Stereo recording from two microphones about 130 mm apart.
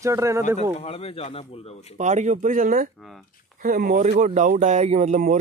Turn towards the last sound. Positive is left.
turn(degrees=-65)  # may be behind; listen again after turning